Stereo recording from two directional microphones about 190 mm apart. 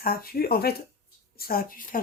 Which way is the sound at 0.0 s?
50° left (ahead or behind).